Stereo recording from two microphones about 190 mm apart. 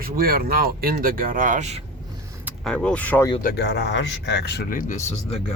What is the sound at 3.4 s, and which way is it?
Speech, 55° left (ahead or behind).